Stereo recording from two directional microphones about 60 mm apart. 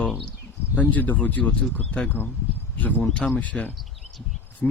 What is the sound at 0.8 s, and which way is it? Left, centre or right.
Speech, left.